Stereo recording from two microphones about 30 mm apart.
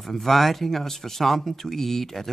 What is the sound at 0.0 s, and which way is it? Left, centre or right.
Speech, centre.